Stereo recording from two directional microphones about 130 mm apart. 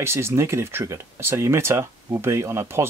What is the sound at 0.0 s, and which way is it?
Speech, 20° right (ahead or behind).